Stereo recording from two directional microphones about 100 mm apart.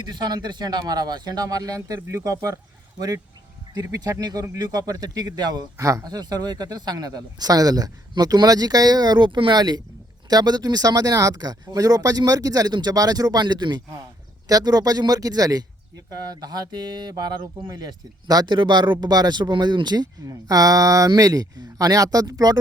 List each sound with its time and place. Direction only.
0.0 s speech: 45° right (ahead or behind)
3.8 s speech: 35° right (ahead or behind)
5.7 s speech: 30° right (ahead or behind)